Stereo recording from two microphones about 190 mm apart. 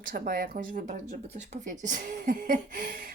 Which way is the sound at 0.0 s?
50° right (ahead or behind).